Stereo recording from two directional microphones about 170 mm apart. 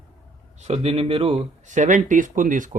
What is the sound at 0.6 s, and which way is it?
Speech, 40° right (ahead or behind).